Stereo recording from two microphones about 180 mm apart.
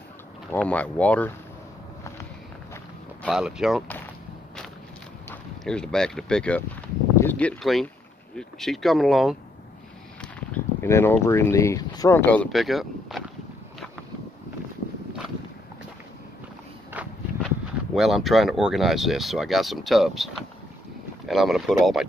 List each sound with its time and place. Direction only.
0.5 s speech: 5° left (ahead or behind)
3.3 s speech: 5° right (ahead or behind)
5.3 s speech: 5° left (ahead or behind)
10.2 s speech: 10° left (ahead or behind)
12.3 s speech: 5° left (ahead or behind)
17.0 s walk: 10° right (ahead or behind)
17.9 s speech: centre (ahead or behind)
21.3 s speech: centre (ahead or behind)